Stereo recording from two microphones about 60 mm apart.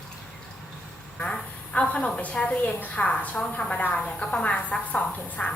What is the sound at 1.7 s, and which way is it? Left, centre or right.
A woman's voice, left.